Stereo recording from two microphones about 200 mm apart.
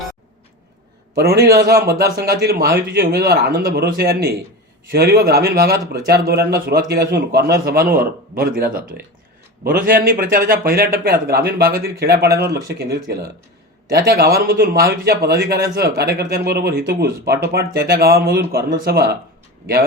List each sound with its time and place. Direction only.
1.1 s a man's voice: 55° right (ahead or behind)